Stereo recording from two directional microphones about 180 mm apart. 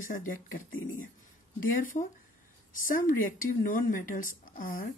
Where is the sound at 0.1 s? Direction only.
50° left (ahead or behind).